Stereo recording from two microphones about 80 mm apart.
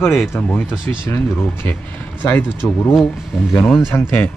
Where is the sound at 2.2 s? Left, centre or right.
Left.